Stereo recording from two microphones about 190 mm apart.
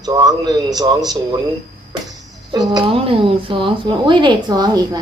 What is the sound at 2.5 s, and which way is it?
Speech, 20° right (ahead or behind).